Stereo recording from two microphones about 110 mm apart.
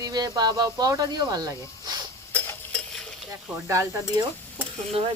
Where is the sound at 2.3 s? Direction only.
20° left (ahead or behind).